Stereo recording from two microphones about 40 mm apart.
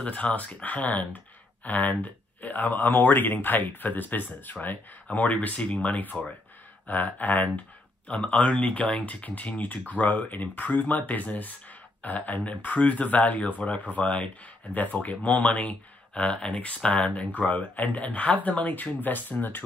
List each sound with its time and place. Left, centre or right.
0.0 s speech: left
5.0 s speech: left
14.7 s speech: left
16.2 s speech: left